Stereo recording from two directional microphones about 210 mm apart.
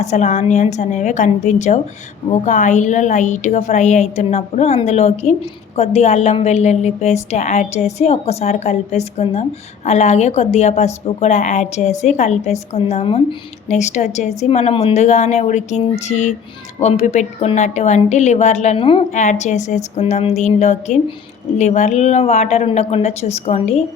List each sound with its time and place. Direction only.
0.0 s a woman's voice: 35° left (ahead or behind)